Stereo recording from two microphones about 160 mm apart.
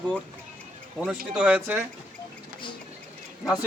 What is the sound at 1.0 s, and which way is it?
Speech, 5° right (ahead or behind).